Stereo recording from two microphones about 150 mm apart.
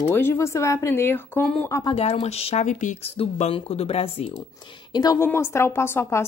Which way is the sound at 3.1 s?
40° left (ahead or behind).